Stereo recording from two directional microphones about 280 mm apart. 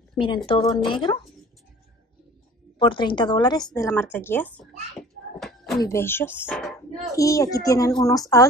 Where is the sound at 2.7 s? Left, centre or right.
Centre.